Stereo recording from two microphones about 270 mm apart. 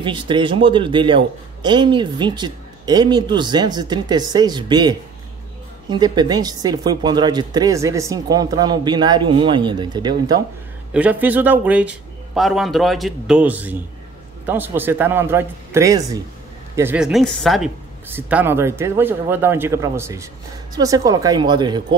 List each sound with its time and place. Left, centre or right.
0.0 s a man's voice: centre